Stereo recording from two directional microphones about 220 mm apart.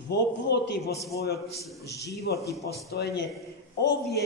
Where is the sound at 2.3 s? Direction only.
50° left (ahead or behind).